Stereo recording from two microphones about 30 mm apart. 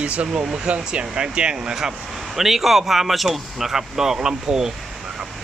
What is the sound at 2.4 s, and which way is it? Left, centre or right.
Speech, centre.